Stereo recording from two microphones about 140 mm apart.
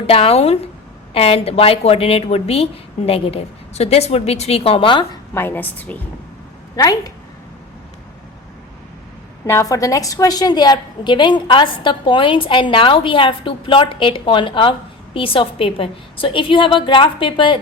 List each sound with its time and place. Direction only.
0.1 s a woman's voice: 45° left (ahead or behind)
5.3 s a woman's voice: 15° left (ahead or behind)
6.7 s a woman's voice: 25° left (ahead or behind)
9.5 s a woman's voice: 20° left (ahead or behind)